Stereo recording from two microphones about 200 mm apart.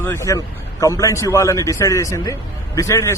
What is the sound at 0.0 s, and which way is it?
Speech, 15° left (ahead or behind).